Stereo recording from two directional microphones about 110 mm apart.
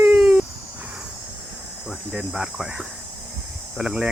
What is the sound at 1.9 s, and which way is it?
Speech, 5° right (ahead or behind).